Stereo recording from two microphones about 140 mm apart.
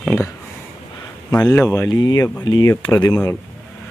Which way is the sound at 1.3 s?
15° left (ahead or behind).